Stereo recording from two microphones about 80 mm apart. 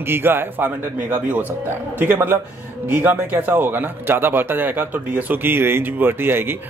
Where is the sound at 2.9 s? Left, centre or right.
Right.